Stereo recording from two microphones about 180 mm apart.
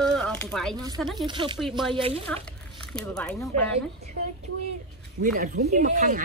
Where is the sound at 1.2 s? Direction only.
25° right (ahead or behind).